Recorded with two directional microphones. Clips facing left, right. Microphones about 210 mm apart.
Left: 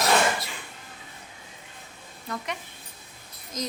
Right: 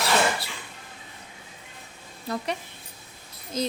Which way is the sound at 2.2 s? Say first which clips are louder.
Right 4 dB; 35° right (ahead or behind).